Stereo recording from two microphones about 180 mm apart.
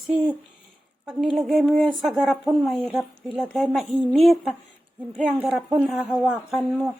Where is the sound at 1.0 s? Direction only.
Centre (ahead or behind).